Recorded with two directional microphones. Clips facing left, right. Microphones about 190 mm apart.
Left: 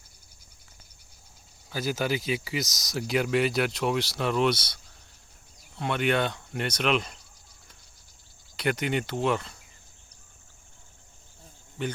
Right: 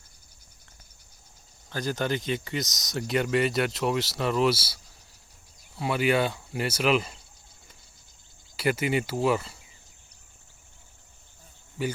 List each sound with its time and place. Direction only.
1.7 s speech: 5° left (ahead or behind)
8.5 s speech: 5° right (ahead or behind)
11.8 s cricket: 5° right (ahead or behind)